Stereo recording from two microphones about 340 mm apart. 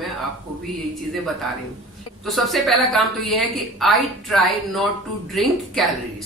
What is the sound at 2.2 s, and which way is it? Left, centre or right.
A woman's voice, centre.